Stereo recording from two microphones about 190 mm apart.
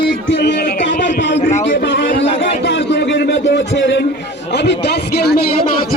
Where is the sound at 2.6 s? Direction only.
65° left (ahead or behind).